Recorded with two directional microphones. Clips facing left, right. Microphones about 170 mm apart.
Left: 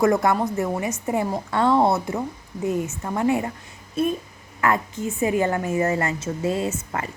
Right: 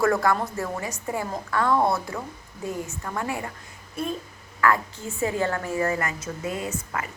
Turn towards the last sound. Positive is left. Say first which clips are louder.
# left 4 dB
turn(degrees=30)  # may be behind; listen again after turning